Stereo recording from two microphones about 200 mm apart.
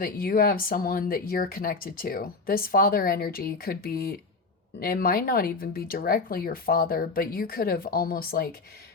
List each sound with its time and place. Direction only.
0.0 s speech: 45° left (ahead or behind)